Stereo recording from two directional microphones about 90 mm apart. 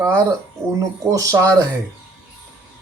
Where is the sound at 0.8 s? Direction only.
35° right (ahead or behind).